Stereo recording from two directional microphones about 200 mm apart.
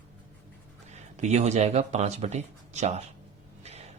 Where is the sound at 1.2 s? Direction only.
35° right (ahead or behind).